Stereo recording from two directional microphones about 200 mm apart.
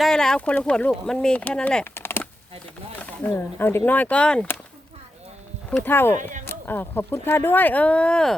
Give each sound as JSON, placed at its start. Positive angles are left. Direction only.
{"t": 0.0, "sound": "speech", "side_deg": 5}
{"t": 5.7, "sound": "speech", "side_deg": 10}